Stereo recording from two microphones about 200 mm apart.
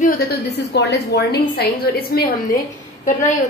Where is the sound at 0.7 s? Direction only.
60° left (ahead or behind).